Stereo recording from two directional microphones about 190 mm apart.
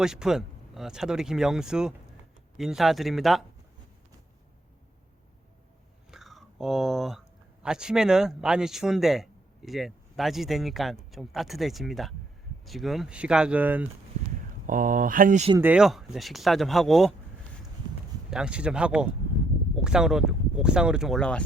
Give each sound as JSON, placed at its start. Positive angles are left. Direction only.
{"t": 0.0, "sound": "speech", "side_deg": -5}
{"t": 6.1, "sound": "whispering", "side_deg": 0}
{"t": 7.6, "sound": "speech", "side_deg": -5}
{"t": 14.7, "sound": "speech", "side_deg": -45}
{"t": 15.5, "sound": "speech", "side_deg": -10}
{"t": 18.3, "sound": "speech", "side_deg": -5}